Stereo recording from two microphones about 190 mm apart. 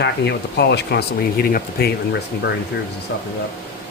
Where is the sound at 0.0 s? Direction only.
65° left (ahead or behind).